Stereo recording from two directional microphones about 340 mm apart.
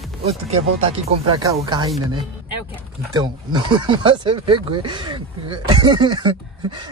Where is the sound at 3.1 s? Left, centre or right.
Centre.